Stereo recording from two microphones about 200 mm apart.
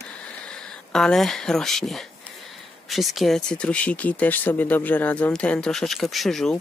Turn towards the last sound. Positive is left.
turn(degrees=0)  # may be behind; listen again after turning